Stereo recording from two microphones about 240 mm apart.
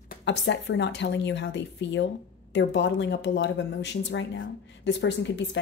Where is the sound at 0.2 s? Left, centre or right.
Left.